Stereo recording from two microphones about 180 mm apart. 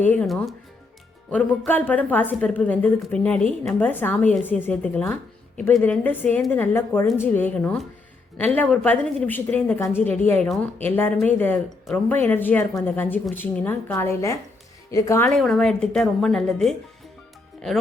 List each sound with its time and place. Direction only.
0.0 s a woman's voice: 10° left (ahead or behind)
15.4 s a woman's voice: centre (ahead or behind)